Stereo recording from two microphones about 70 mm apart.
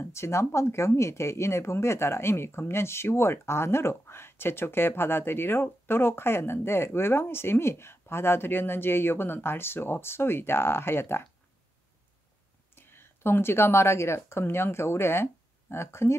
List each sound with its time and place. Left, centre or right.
0.0 s speech: left
12.7 s speech: left